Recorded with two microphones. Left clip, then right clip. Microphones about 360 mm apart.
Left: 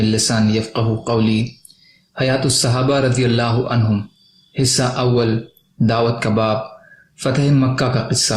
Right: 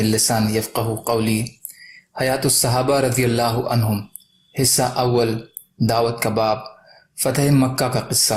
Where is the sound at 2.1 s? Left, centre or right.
Centre.